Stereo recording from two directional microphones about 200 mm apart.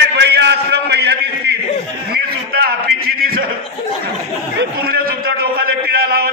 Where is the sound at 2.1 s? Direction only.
50° right (ahead or behind).